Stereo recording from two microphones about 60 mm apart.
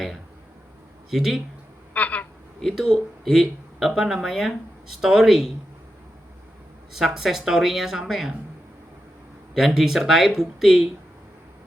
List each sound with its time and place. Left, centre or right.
1.1 s speech: centre
1.9 s a sound: left
2.7 s speech: centre
6.9 s speech: centre
9.6 s speech: centre